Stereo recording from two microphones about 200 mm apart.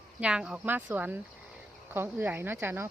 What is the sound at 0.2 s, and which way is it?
Speech, 5° right (ahead or behind).